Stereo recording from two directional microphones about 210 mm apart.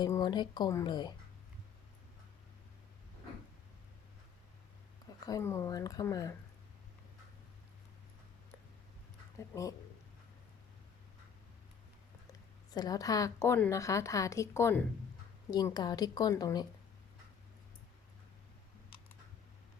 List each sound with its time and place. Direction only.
0.0 s a woman's voice: 20° left (ahead or behind)
5.2 s a woman's voice: 15° left (ahead or behind)
12.7 s a woman's voice: 20° left (ahead or behind)